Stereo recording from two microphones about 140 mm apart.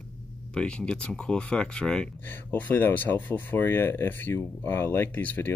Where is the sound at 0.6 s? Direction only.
5° left (ahead or behind).